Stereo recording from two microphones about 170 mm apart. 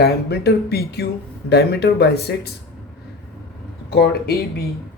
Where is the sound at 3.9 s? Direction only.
70° left (ahead or behind).